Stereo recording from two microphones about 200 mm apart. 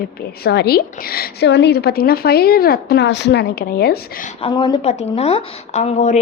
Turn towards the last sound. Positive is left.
turn(degrees=35)  # may be behind; listen again after turning